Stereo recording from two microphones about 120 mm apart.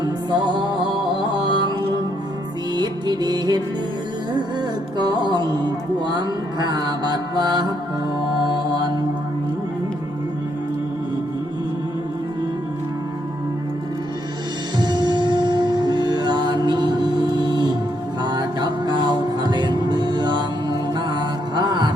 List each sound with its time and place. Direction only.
0.0 s music: 40° right (ahead or behind)
2.7 s music: 35° right (ahead or behind)
4.9 s music: 40° right (ahead or behind)
14.8 s music: 35° right (ahead or behind)